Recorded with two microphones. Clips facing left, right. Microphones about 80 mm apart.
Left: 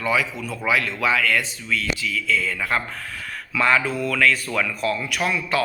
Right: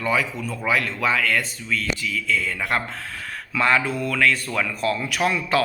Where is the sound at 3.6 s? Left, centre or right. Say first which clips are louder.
Left 1 dB; centre.